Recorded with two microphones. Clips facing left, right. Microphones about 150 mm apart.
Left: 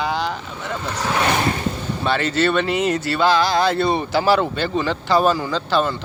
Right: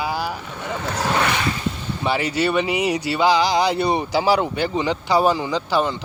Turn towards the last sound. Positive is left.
turn(degrees=-15)  # may be behind; listen again after turning